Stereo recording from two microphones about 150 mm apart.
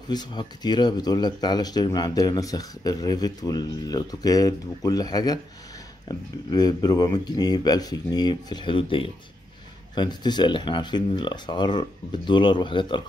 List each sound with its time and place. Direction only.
0.1 s speech: 30° left (ahead or behind)